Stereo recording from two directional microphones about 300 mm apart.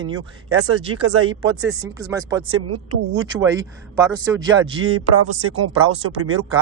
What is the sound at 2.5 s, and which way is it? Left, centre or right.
Speech, right.